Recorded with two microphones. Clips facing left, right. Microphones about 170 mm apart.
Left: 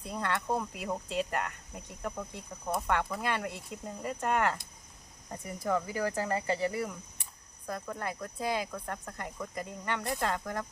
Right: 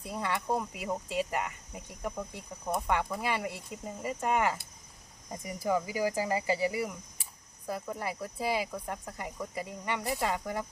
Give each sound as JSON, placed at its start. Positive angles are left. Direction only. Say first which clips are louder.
{"t": 0.0, "sound": "speech", "louder": "even", "side_deg": -5}